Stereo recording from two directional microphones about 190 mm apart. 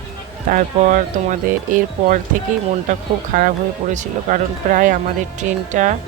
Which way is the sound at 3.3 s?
45° right (ahead or behind).